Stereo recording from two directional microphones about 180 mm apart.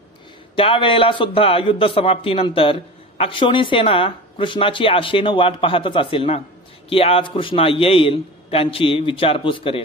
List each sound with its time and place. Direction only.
0.6 s a man's voice: 30° left (ahead or behind)